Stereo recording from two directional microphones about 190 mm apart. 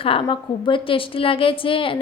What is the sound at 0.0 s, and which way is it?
A woman's voice, 25° left (ahead or behind).